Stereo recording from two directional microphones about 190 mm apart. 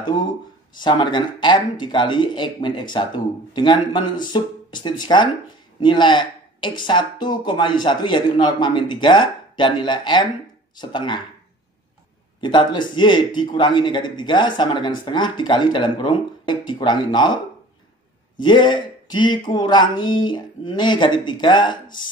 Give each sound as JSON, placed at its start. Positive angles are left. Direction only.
{"t": 0.7, "sound": "speech", "side_deg": 25}
{"t": 12.4, "sound": "speech", "side_deg": 25}
{"t": 18.4, "sound": "speech", "side_deg": 25}